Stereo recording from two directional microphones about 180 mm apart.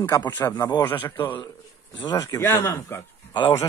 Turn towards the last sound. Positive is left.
turn(degrees=15)  # may be behind; listen again after turning